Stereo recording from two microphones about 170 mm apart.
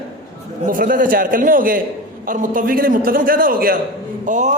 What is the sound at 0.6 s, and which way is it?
A man's voice, 55° right (ahead or behind).